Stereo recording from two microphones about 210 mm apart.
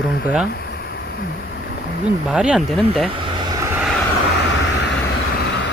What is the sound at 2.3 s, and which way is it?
Speech, 5° right (ahead or behind).